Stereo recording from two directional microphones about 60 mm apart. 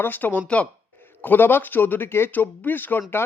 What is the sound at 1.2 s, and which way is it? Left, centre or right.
Speech, left.